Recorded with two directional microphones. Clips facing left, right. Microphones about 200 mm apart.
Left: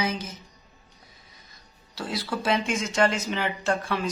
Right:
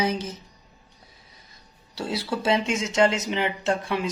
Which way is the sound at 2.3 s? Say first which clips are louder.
Right 2 dB; 25° right (ahead or behind).